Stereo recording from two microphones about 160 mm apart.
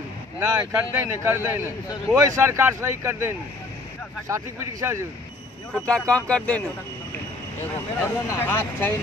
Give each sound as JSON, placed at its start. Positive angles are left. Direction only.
{"t": 0.4, "sound": "a man's voice", "side_deg": -15}
{"t": 5.7, "sound": "speech", "side_deg": 5}
{"t": 8.0, "sound": "speech", "side_deg": 15}